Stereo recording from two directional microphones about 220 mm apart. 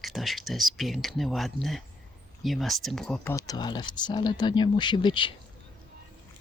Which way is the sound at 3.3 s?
15° left (ahead or behind).